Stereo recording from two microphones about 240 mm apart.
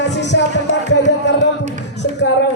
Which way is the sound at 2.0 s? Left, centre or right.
Left.